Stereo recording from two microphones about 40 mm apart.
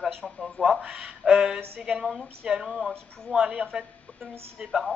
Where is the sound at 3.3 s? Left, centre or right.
Right.